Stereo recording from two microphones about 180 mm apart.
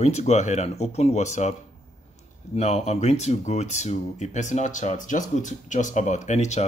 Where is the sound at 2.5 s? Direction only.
40° left (ahead or behind).